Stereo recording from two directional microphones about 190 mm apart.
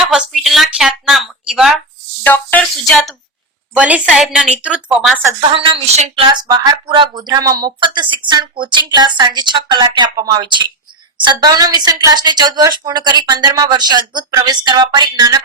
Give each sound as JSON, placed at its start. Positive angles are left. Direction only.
{"t": 0.0, "sound": "speech", "side_deg": 0}
{"t": 2.2, "sound": "a woman's voice", "side_deg": 10}
{"t": 5.6, "sound": "speech", "side_deg": -30}